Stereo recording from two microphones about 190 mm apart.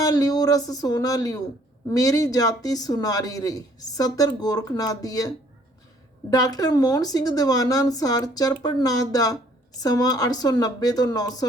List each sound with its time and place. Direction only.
0.0 s speech: 20° left (ahead or behind)
6.3 s speech: 20° left (ahead or behind)